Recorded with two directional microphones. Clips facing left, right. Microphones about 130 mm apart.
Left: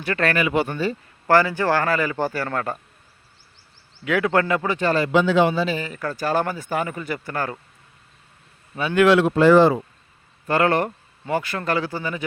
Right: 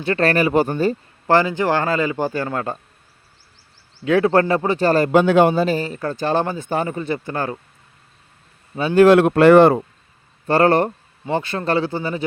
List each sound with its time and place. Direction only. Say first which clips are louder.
0.0 s speech: right 4 dB; 30° right (ahead or behind)
1.3 s a man's voice: right 1 dB; 20° right (ahead or behind)
4.0 s a man's voice: right 5 dB; 30° right (ahead or behind)
8.7 s speech: right 4 dB; 20° right (ahead or behind)
9.0 s speech: right 4 dB; 50° right (ahead or behind)
10.4 s a man's voice: right 4 dB; 35° right (ahead or behind)